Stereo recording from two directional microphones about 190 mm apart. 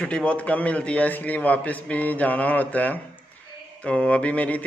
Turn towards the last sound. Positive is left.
turn(degrees=10)  # may be behind; listen again after turning